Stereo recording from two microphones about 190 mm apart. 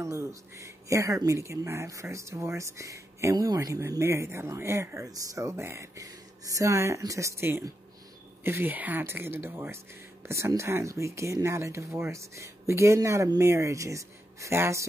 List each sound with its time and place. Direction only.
0.0 s speech: 15° right (ahead or behind)